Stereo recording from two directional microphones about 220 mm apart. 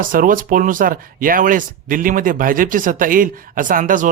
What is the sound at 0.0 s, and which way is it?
Speech, 40° right (ahead or behind).